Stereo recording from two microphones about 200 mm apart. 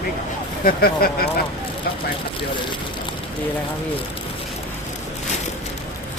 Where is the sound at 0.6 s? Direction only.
50° left (ahead or behind).